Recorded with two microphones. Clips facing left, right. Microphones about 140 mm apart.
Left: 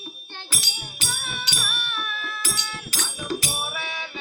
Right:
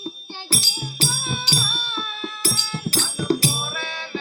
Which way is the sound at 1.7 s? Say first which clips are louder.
Right 1 dB; 20° right (ahead or behind).